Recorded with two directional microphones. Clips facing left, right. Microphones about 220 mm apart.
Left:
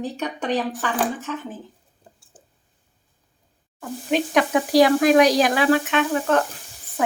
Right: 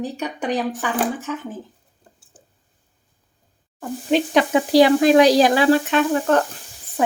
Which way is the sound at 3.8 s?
30° right (ahead or behind).